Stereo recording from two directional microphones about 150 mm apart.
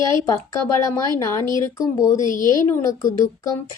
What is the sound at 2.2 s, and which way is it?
Speech, 60° left (ahead or behind).